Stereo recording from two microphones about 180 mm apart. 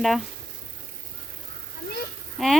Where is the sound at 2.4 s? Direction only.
Centre (ahead or behind).